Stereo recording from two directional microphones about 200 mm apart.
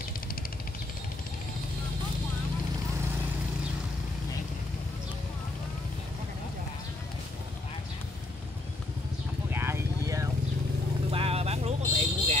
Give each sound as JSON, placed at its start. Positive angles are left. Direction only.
{"t": 9.5, "sound": "vehicle", "side_deg": -10}
{"t": 11.1, "sound": "vehicle", "side_deg": -30}